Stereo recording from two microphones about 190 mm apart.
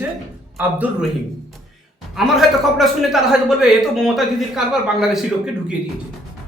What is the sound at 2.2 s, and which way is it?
A man's voice, centre (ahead or behind).